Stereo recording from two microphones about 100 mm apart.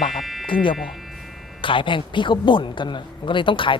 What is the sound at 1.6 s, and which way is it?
A man's voice, 60° left (ahead or behind).